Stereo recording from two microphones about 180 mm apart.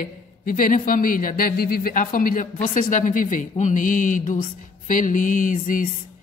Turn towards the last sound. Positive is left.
turn(degrees=45)  # may be behind; listen again after turning